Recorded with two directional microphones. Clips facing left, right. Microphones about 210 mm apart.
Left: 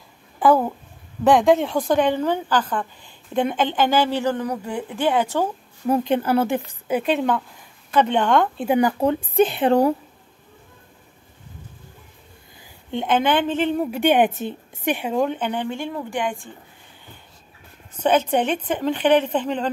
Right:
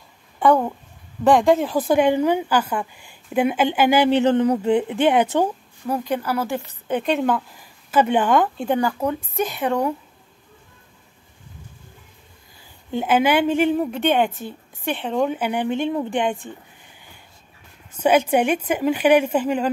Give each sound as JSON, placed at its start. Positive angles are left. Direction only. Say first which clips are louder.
{"t": 0.4, "sound": "a woman's voice", "louder": "even", "side_deg": 5}
{"t": 5.9, "sound": "speech", "louder": "left 4 dB", "side_deg": 25}
{"t": 6.9, "sound": "speech", "louder": "even", "side_deg": 5}
{"t": 8.6, "sound": "a woman's voice", "louder": "left 2 dB", "side_deg": 15}
{"t": 9.0, "sound": "a woman's voice", "louder": "left 5 dB", "side_deg": 30}
{"t": 12.9, "sound": "a woman's voice", "louder": "right 2 dB", "side_deg": -5}
{"t": 13.7, "sound": "a woman's voice", "louder": "left 2 dB", "side_deg": 5}
{"t": 15.0, "sound": "a woman's voice", "louder": "right 3 dB", "side_deg": 5}
{"t": 17.9, "sound": "a woman's voice", "louder": "right 2 dB", "side_deg": -10}